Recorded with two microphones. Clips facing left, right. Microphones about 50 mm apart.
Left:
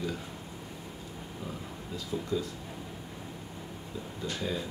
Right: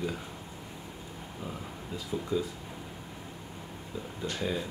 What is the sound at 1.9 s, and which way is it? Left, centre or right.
Speech, centre.